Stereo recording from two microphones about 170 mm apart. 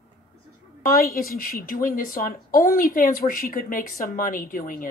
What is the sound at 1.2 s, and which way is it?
A woman's voice, 60° left (ahead or behind).